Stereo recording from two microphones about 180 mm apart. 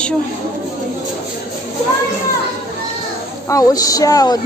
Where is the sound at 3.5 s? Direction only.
20° left (ahead or behind).